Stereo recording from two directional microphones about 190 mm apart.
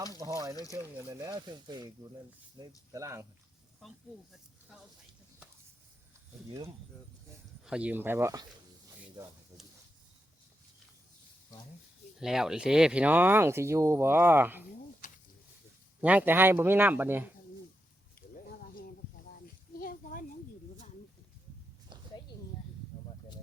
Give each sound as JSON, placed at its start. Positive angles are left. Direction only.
{"t": 0.2, "sound": "speech", "side_deg": -20}
{"t": 0.5, "sound": "speech", "side_deg": 20}
{"t": 0.8, "sound": "speech", "side_deg": -15}
{"t": 7.6, "sound": "speech", "side_deg": -5}
{"t": 12.2, "sound": "speech", "side_deg": 0}
{"t": 15.0, "sound": "a sound", "side_deg": 45}
{"t": 16.0, "sound": "speech", "side_deg": -10}
{"t": 19.7, "sound": "a sound", "side_deg": 50}